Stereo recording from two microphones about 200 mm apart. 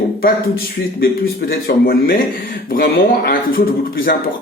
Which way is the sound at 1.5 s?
50° left (ahead or behind).